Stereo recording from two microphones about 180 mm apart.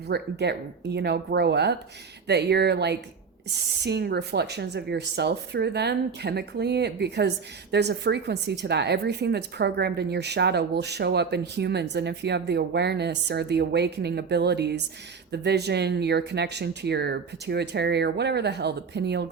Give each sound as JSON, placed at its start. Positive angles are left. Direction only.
{"t": 0.1, "sound": "speech", "side_deg": -65}